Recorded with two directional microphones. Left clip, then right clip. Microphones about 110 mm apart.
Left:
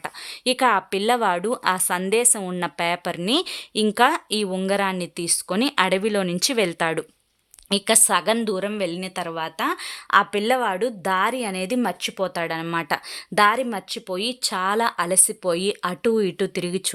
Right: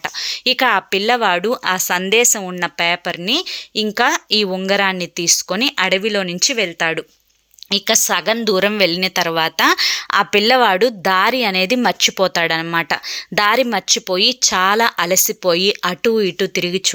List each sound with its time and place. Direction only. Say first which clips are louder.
0.0 s a woman's voice: right 7 dB; centre (ahead or behind)
2.4 s speech: right 6 dB; centre (ahead or behind)
8.5 s a woman's voice: right 11 dB; 35° right (ahead or behind); by 13.1 s 10° right (ahead or behind)
13.3 s speech: right 4 dB; 25° right (ahead or behind); by 16.9 s 5° right (ahead or behind)